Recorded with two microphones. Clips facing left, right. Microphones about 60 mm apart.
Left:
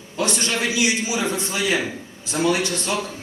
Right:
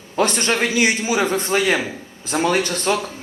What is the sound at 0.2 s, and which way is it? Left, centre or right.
A man's voice, right.